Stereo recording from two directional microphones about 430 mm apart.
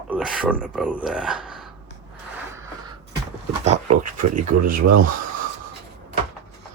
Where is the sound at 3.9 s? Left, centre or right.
Right.